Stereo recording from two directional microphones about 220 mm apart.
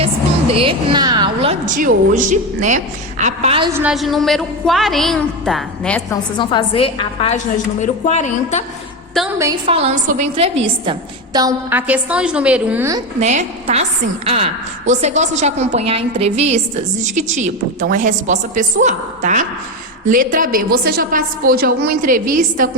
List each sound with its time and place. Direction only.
0.5 s a woman's voice: 25° right (ahead or behind)
3.7 s a woman's voice: 10° right (ahead or behind)
6.4 s a woman's voice: 20° left (ahead or behind)
9.6 s a woman's voice: 30° right (ahead or behind)
11.3 s a woman's voice: 10° right (ahead or behind)
13.1 s a woman's voice: 30° right (ahead or behind)